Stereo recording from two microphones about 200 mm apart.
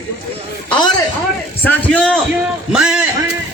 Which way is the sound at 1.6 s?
5° left (ahead or behind).